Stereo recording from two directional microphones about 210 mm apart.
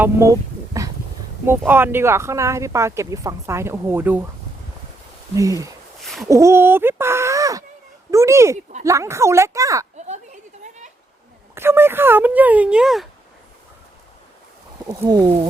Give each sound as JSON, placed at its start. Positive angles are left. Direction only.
{"t": 0.0, "sound": "a sound", "side_deg": -15}
{"t": 1.5, "sound": "speech", "side_deg": -10}
{"t": 5.3, "sound": "speech", "side_deg": -15}
{"t": 10.1, "sound": "a sound", "side_deg": -35}
{"t": 11.5, "sound": "speech", "side_deg": -10}
{"t": 14.8, "sound": "speech", "side_deg": -20}